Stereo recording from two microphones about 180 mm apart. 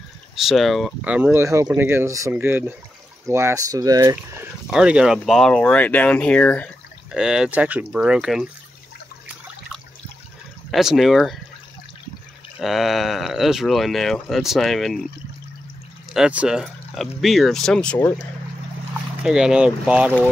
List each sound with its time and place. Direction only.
0.4 s speech: centre (ahead or behind); by 4.5 s 15° right (ahead or behind)
4.6 s speech: 5° right (ahead or behind)
7.1 s speech: 5° right (ahead or behind)
10.7 s speech: centre (ahead or behind)
12.5 s speech: centre (ahead or behind)
16.1 s speech: 5° right (ahead or behind)
19.2 s speech: 5° right (ahead or behind)